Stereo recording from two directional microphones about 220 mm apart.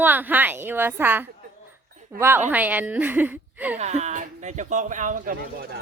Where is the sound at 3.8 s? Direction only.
30° right (ahead or behind).